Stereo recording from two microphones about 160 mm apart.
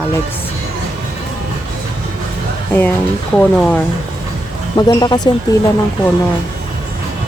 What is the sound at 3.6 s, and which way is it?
Speech, 10° left (ahead or behind).